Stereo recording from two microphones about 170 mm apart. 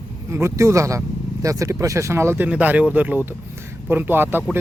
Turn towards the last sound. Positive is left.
turn(degrees=-10)  # may be behind; listen again after turning